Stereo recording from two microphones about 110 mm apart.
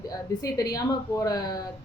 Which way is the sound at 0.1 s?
35° left (ahead or behind).